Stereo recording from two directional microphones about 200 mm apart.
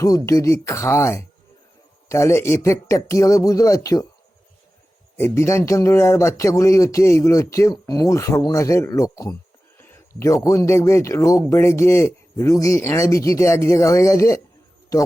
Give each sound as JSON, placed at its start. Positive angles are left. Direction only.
{"t": 0.3, "sound": "speech", "side_deg": 15}
{"t": 5.1, "sound": "speech", "side_deg": 10}